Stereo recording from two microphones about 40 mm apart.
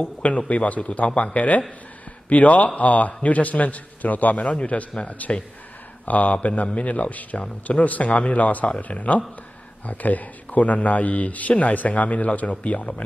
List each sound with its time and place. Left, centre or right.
0.0 s a man's voice: left